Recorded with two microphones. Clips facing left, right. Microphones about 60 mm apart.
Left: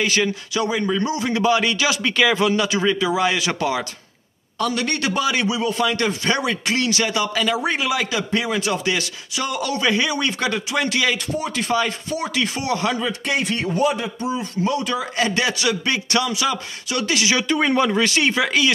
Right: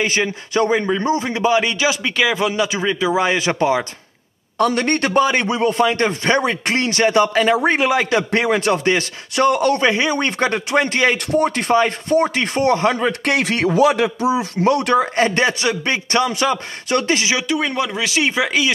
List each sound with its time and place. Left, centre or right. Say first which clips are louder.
0.0 s a man's voice: right 1 dB; right
4.6 s speech: right 5 dB; right
5.9 s speech: right 4 dB; right
9.8 s speech: right 3 dB; right
11.3 s speech: right 6 dB; right
13.2 s speech: right 5 dB; right
14.6 s speech: right 7 dB; right
15.1 s speech: right 4 dB; right
17.5 s speech: left 2 dB; centre